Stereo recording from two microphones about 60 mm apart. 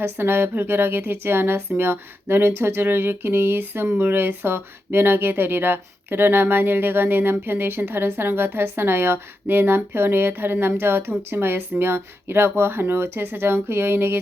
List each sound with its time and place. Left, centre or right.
0.0 s a woman's voice: right